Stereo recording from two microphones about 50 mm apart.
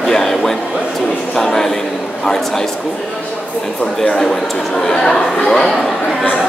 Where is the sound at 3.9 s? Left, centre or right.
Centre.